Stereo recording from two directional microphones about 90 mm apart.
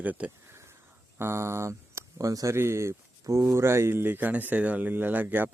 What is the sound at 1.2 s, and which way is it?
Speech, 30° right (ahead or behind).